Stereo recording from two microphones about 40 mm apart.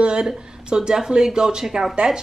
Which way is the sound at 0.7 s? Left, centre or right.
Centre.